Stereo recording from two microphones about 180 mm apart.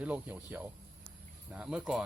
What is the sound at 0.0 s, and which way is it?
Speech, 5° right (ahead or behind).